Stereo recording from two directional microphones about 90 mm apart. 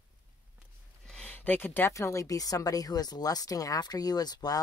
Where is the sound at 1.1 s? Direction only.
15° left (ahead or behind).